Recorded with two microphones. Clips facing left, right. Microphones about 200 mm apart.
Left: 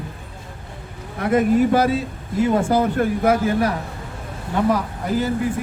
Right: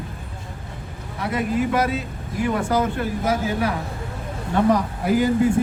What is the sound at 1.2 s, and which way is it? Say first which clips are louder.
Speech: left 7 dB; 50° left (ahead or behind).